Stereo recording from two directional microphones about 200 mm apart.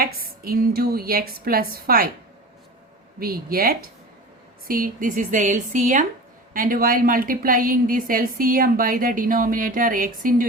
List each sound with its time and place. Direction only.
0.0 s a woman's voice: 45° right (ahead or behind)
3.2 s a woman's voice: 50° right (ahead or behind)